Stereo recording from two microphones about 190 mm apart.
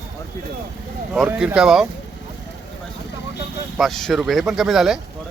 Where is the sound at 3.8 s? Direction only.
Centre (ahead or behind).